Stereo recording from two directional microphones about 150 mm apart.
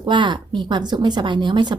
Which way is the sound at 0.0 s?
30° right (ahead or behind).